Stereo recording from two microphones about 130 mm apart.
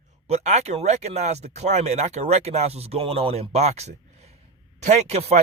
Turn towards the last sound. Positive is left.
turn(degrees=-55)  # may be behind; listen again after turning